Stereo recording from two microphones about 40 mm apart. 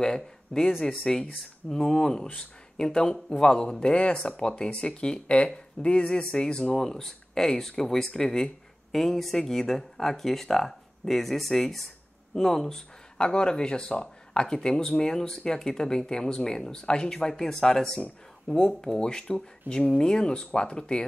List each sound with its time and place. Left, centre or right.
0.0 s speech: centre
13.2 s speech: left